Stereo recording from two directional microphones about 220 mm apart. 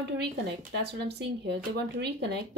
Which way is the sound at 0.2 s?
50° right (ahead or behind).